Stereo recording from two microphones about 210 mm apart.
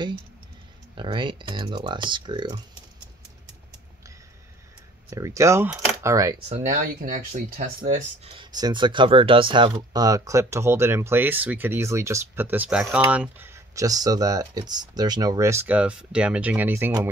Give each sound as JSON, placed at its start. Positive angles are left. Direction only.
{"t": 0.9, "sound": "speech", "side_deg": -25}
{"t": 5.1, "sound": "speech", "side_deg": -15}
{"t": 6.5, "sound": "speech", "side_deg": -40}
{"t": 8.2, "sound": "speech", "side_deg": -25}